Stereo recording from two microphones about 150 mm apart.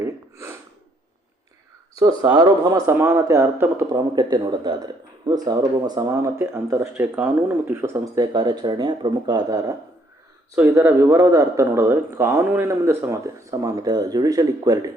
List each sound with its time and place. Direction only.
0.0 s snort: 20° right (ahead or behind)
2.0 s speech: 25° right (ahead or behind)
10.5 s speech: 15° right (ahead or behind)